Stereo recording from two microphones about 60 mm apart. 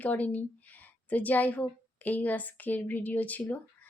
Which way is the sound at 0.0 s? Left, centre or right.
Left.